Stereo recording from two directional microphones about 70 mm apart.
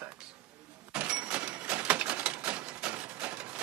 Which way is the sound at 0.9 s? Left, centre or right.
Centre.